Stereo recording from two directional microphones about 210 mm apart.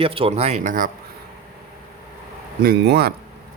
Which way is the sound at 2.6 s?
50° right (ahead or behind).